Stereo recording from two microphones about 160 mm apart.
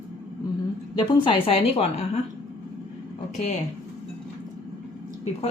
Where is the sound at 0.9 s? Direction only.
30° left (ahead or behind).